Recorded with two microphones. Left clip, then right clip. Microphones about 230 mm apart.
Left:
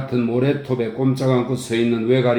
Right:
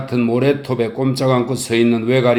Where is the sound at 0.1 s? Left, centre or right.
Right.